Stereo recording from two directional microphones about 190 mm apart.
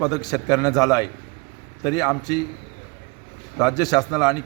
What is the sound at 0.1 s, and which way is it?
A man's voice, 20° left (ahead or behind).